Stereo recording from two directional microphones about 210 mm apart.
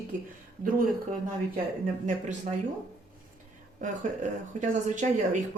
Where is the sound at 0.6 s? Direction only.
40° right (ahead or behind).